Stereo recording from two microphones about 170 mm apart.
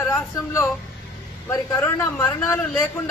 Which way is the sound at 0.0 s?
15° left (ahead or behind).